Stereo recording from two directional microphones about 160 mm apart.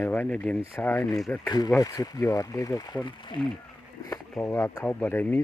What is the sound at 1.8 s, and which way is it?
Speech, 20° left (ahead or behind).